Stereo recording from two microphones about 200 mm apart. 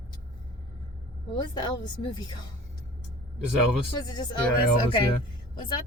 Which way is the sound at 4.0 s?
20° left (ahead or behind).